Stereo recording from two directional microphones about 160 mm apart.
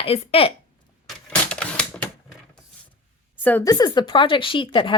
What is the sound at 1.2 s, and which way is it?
Typewriter, 5° left (ahead or behind).